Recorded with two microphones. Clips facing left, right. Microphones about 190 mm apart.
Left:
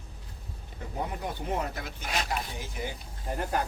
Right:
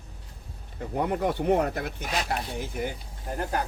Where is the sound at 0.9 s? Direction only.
65° right (ahead or behind).